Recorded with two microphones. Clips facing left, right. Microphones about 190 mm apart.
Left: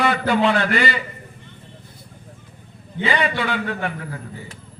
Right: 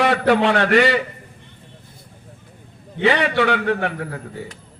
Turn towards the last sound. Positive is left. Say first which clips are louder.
# right 5 dB
turn(degrees=-65)  # may be behind; listen again after turning